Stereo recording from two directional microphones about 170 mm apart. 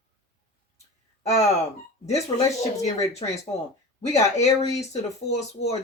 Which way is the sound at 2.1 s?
40° left (ahead or behind).